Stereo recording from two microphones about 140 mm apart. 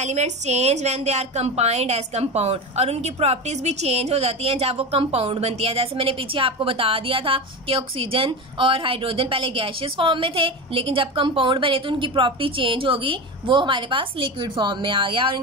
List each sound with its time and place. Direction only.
0.0 s a woman's voice: 55° right (ahead or behind); by 15.4 s 35° right (ahead or behind)